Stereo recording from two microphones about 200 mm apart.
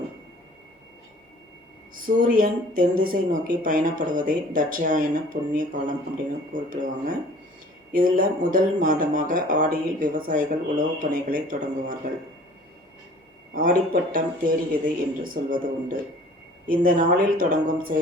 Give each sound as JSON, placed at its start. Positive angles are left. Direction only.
{"t": 2.0, "sound": "speech", "side_deg": -45}
{"t": 13.5, "sound": "a man's voice", "side_deg": -45}